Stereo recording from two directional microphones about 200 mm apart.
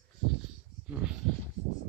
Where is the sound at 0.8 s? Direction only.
5° right (ahead or behind).